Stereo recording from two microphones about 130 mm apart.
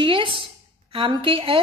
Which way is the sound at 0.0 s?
40° right (ahead or behind).